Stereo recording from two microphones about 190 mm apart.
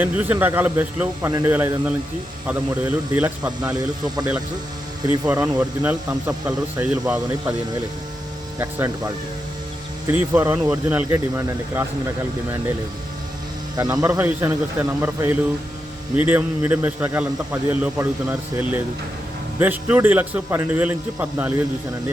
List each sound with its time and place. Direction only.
0.0 s a man's voice: 10° right (ahead or behind)
5.2 s a man's voice: 10° right (ahead or behind)
8.5 s a man's voice: 15° right (ahead or behind)
13.7 s a man's voice: 20° right (ahead or behind)